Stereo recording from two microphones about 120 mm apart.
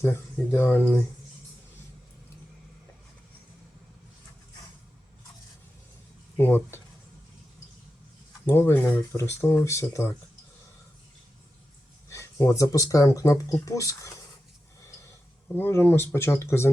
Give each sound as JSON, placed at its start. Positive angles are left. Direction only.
{"t": 0.0, "sound": "speech", "side_deg": 20}
{"t": 6.3, "sound": "speech", "side_deg": 20}
{"t": 8.4, "sound": "speech", "side_deg": 20}
{"t": 12.0, "sound": "speech", "side_deg": 25}
{"t": 14.8, "sound": "a sound", "side_deg": 25}
{"t": 15.5, "sound": "speech", "side_deg": 15}